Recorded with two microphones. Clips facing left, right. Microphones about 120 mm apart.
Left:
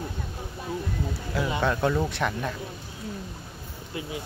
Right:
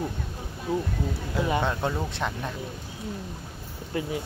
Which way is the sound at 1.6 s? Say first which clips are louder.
Left 3 dB; 20° right (ahead or behind).